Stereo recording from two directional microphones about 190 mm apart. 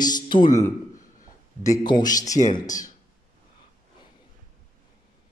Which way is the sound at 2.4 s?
40° left (ahead or behind).